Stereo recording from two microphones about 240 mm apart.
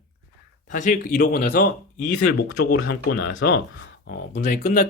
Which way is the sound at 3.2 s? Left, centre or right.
Left.